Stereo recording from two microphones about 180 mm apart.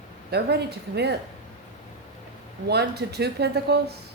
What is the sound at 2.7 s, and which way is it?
Speech, 65° right (ahead or behind).